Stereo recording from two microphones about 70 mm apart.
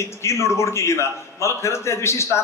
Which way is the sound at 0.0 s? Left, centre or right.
Left.